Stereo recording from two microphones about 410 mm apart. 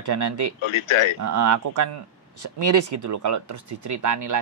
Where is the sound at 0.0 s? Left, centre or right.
Right.